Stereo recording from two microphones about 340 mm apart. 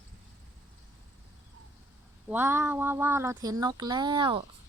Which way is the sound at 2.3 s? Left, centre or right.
Centre.